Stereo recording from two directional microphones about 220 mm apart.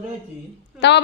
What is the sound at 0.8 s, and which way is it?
Speech, 50° left (ahead or behind).